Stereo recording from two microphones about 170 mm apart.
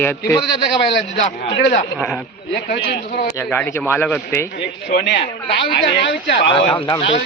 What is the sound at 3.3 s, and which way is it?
Speech, 15° left (ahead or behind).